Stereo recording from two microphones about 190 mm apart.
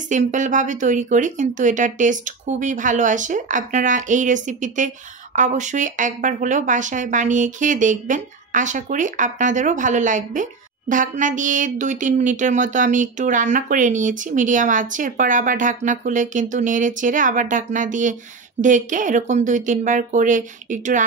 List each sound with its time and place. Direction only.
0.1 s speech: 40° right (ahead or behind)